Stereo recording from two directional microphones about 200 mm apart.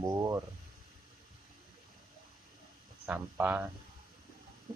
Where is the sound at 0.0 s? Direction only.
15° right (ahead or behind).